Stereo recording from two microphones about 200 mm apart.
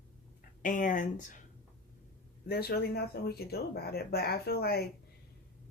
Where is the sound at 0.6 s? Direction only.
40° left (ahead or behind).